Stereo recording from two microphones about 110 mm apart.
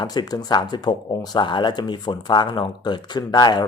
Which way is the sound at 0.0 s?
40° left (ahead or behind).